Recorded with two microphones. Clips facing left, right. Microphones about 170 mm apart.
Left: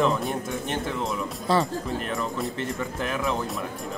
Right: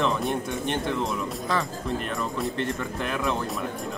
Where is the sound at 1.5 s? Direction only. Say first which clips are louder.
Left 5 dB; 30° left (ahead or behind).